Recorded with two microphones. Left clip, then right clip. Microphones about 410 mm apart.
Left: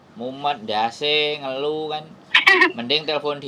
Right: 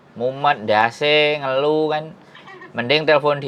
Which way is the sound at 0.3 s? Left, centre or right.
Right.